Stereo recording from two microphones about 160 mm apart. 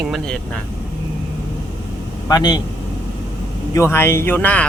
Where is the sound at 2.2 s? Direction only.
25° left (ahead or behind).